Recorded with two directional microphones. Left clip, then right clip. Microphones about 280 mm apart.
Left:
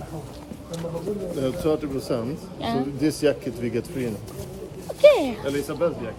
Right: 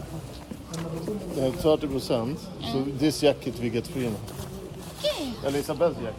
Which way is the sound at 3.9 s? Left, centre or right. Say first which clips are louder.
Left 1 dB; centre.